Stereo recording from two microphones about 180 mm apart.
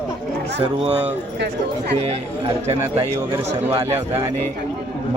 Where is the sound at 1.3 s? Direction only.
70° right (ahead or behind).